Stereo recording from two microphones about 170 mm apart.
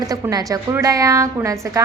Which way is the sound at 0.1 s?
20° right (ahead or behind).